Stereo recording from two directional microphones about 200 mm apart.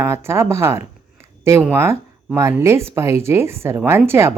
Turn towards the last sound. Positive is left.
turn(degrees=-10)  # may be behind; listen again after turning